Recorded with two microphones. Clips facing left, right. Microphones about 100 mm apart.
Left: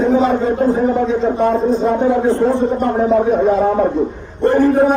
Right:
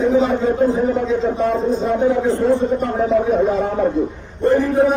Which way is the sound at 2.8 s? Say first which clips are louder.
Left 3 dB; 50° left (ahead or behind).